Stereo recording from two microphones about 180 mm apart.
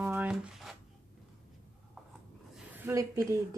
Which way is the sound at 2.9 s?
15° right (ahead or behind).